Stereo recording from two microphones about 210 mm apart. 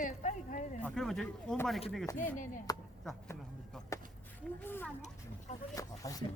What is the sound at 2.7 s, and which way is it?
Speech, 15° left (ahead or behind).